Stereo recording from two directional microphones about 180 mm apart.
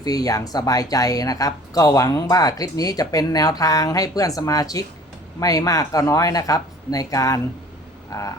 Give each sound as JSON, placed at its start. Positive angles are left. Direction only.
{"t": 0.0, "sound": "speech", "side_deg": 20}